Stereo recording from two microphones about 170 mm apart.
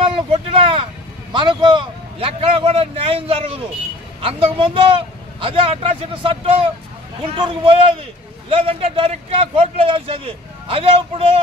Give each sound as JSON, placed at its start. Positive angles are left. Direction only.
{"t": 0.0, "sound": "vehicle", "side_deg": -35}
{"t": 1.3, "sound": "a man's voice", "side_deg": -30}